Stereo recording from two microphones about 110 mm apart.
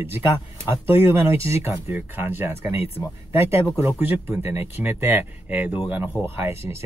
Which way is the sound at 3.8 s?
20° right (ahead or behind).